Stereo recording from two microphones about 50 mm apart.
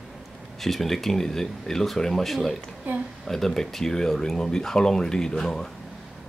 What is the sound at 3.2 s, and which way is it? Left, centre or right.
Speech, centre.